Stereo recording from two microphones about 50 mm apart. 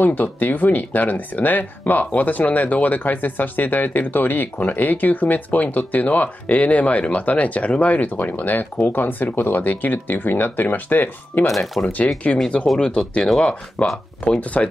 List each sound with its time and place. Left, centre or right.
0.0 s speech: left
11.5 s speech: centre
12.7 s speech: centre